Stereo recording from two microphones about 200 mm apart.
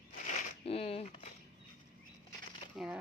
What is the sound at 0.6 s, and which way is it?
Speech, 30° left (ahead or behind).